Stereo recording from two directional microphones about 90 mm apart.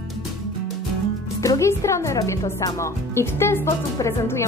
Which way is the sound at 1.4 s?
35° left (ahead or behind).